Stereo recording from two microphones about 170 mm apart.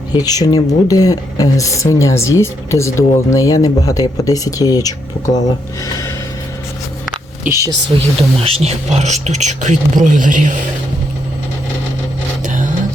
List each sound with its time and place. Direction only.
0.1 s speech: 20° left (ahead or behind)
7.4 s speech: 20° right (ahead or behind)
7.9 s speech: 35° right (ahead or behind)
12.5 s vehicle: 50° right (ahead or behind)